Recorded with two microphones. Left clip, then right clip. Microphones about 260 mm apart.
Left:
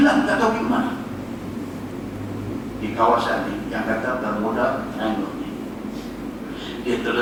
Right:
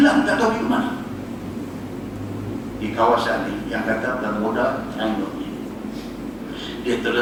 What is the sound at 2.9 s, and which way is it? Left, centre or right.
Speech, right.